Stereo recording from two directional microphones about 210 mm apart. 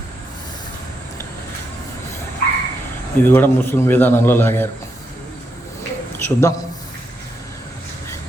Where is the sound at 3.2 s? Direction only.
10° left (ahead or behind).